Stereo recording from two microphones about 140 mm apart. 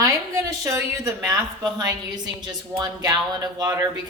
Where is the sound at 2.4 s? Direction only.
30° right (ahead or behind).